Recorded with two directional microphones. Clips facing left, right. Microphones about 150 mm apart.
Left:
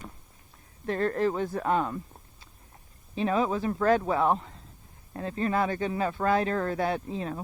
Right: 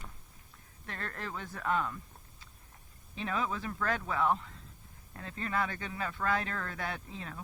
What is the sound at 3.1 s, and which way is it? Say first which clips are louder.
Speech: left 9 dB; 30° left (ahead or behind).